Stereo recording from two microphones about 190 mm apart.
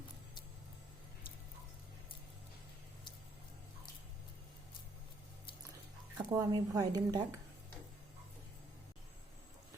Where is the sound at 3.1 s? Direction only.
25° left (ahead or behind).